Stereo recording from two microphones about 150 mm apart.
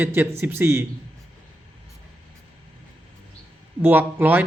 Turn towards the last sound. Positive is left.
turn(degrees=-10)  # may be behind; listen again after turning